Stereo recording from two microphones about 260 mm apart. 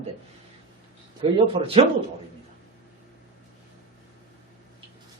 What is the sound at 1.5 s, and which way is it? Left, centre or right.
Speech, right.